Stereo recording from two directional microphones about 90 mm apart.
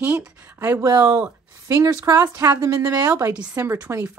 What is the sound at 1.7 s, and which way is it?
A woman's voice, 35° right (ahead or behind).